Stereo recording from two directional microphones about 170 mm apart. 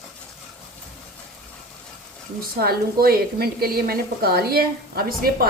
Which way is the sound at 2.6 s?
65° right (ahead or behind).